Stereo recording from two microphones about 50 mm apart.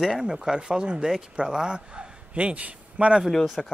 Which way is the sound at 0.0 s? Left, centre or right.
Centre.